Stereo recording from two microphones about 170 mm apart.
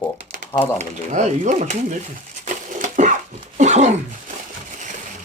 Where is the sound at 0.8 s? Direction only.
45° right (ahead or behind).